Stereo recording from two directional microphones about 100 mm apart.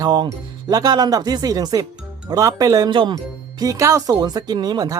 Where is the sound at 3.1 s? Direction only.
40° right (ahead or behind).